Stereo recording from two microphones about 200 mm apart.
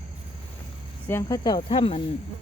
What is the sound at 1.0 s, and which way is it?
Speech, 15° left (ahead or behind).